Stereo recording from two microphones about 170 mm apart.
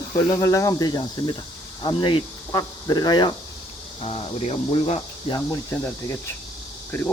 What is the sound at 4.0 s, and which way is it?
Cricket, 35° left (ahead or behind).